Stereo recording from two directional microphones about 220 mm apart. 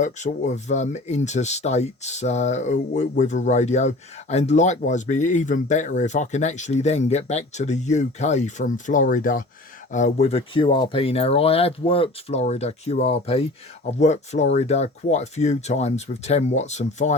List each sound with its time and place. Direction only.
0.0 s speech: 35° left (ahead or behind)